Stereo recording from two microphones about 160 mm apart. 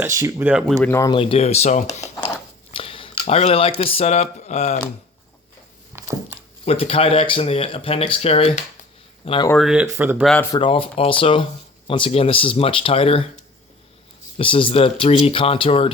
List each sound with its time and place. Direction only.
0.0 s speech: 20° right (ahead or behind)
0.8 s speech: 15° left (ahead or behind)
1.1 s speech: 35° left (ahead or behind)
2.7 s speech: 35° left (ahead or behind)
6.0 s a sound: 20° right (ahead or behind)
6.7 s speech: 35° left (ahead or behind)
9.6 s speech: 5° right (ahead or behind)
10.5 s speech: 35° left (ahead or behind)
14.3 s speech: 35° left (ahead or behind)